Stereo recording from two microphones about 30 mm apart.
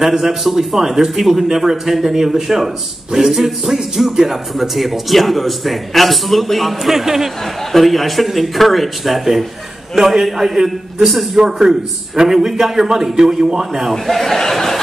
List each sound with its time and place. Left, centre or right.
0.0 s a man's voice: centre
6.8 s a man's voice: centre
7.7 s a man's voice: centre
11.4 s a man's voice: right
12.2 s a man's voice: centre
14.0 s speech: centre